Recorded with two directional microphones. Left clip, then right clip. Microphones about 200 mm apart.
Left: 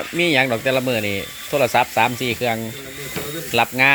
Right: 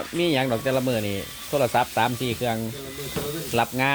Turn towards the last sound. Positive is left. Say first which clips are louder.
# left 7 dB
turn(degrees=10)  # may be behind; listen again after turning